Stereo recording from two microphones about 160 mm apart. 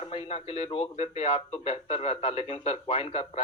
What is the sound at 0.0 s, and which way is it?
Speech, 35° left (ahead or behind).